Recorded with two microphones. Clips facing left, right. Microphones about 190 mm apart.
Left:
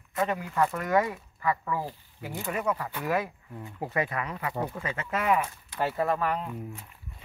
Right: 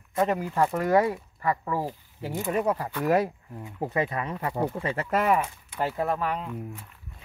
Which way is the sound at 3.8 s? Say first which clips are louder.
Right 3 dB; 25° right (ahead or behind).